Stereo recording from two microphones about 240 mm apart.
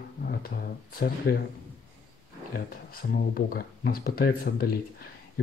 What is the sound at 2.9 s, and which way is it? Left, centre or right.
Speech, left.